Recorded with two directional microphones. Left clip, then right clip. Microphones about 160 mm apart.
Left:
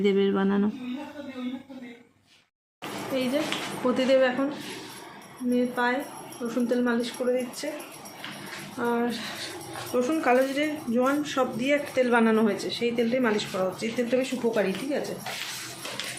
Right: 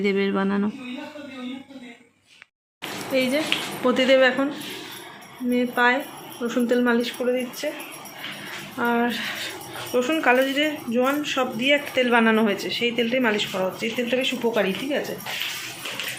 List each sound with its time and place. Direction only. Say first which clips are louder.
0.0 s speech: right 1 dB; centre (ahead or behind)
3.1 s speech: right 6 dB; 10° right (ahead or behind)
5.5 s speech: right 5 dB; 20° right (ahead or behind)
8.8 s speech: right 5 dB; 5° right (ahead or behind)